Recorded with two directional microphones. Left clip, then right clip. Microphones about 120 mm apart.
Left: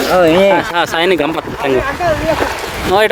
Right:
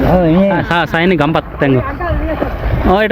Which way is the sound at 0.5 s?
35° left (ahead or behind).